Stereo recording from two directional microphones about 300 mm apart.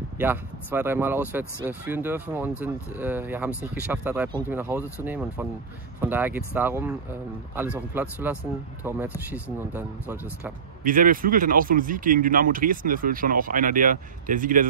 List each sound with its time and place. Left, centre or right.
0.2 s speech: centre
7.9 s speech: centre
10.8 s speech: right